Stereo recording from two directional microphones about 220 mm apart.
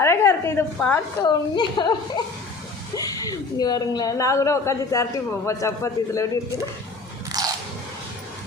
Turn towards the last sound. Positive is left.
turn(degrees=-15)  # may be behind; listen again after turning